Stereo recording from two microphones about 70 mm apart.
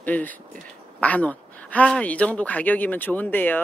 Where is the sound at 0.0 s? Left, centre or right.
Left.